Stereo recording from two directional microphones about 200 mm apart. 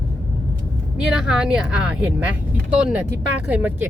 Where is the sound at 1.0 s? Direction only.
5° right (ahead or behind).